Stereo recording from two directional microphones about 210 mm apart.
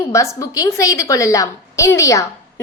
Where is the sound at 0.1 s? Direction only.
15° left (ahead or behind).